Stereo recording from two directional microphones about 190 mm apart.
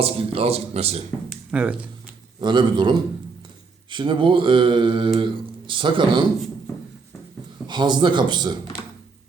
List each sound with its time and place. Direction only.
0.0 s speech: 30° right (ahead or behind)
1.3 s a sound: 5° right (ahead or behind)
2.4 s mantra: 25° right (ahead or behind)
7.7 s mantra: 25° right (ahead or behind)